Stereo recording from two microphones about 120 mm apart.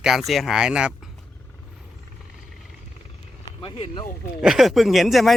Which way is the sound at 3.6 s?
45° left (ahead or behind).